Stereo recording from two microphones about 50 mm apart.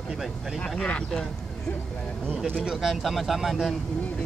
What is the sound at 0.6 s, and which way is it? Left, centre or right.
Speech, left.